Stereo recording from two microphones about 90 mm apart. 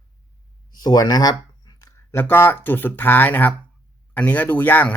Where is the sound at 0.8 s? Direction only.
50° left (ahead or behind).